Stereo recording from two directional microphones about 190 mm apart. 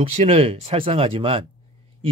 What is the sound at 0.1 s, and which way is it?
Speech, 30° right (ahead or behind).